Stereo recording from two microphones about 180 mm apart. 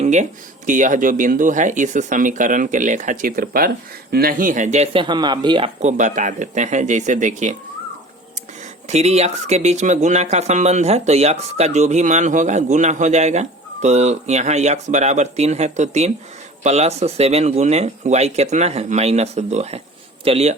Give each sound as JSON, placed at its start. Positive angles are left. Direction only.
{"t": 0.0, "sound": "a sound", "side_deg": -40}
{"t": 0.7, "sound": "speech", "side_deg": -45}
{"t": 8.9, "sound": "speech", "side_deg": -35}